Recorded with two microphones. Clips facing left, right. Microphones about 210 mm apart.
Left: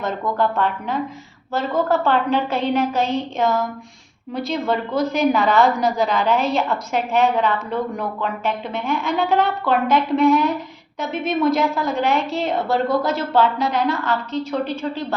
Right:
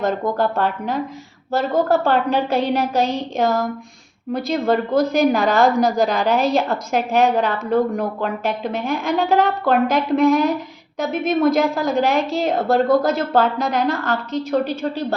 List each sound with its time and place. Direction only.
0.0 s a woman's voice: 40° right (ahead or behind)